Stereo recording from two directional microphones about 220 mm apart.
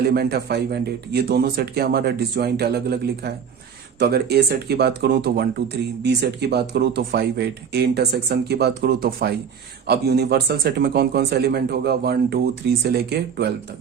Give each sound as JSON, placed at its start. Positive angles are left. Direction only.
{"t": 0.1, "sound": "speech", "side_deg": -45}